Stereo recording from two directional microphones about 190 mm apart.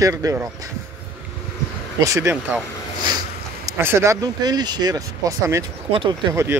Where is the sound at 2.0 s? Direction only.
15° right (ahead or behind).